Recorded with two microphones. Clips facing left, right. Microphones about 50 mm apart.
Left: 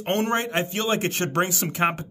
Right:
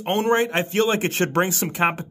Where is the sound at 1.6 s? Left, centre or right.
Centre.